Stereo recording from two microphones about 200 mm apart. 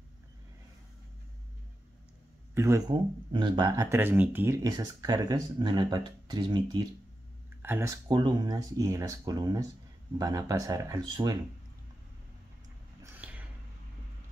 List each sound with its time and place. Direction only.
2.5 s speech: 15° right (ahead or behind)
7.6 s speech: 10° right (ahead or behind)
8.1 s speech: 20° right (ahead or behind)
13.0 s a sound: 5° right (ahead or behind)